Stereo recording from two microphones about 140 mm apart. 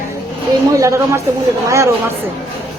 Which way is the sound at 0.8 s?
20° right (ahead or behind).